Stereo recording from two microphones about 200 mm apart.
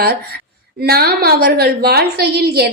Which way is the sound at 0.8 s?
50° right (ahead or behind).